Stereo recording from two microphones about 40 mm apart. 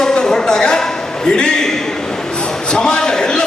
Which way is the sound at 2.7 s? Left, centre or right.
Left.